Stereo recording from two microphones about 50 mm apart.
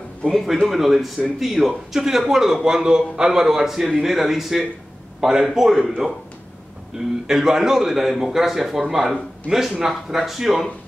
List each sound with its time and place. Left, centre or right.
0.7 s speech: centre
6.9 s a man's voice: centre